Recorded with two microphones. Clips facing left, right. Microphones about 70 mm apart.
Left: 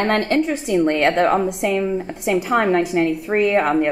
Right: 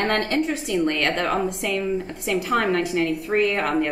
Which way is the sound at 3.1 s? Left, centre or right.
Centre.